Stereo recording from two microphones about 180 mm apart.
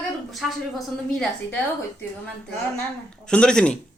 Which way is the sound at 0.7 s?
5° left (ahead or behind).